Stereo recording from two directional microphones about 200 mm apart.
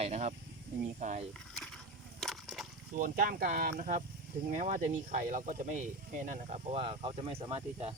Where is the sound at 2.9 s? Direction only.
45° right (ahead or behind).